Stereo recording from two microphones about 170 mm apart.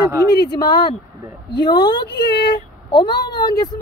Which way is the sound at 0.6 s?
25° left (ahead or behind).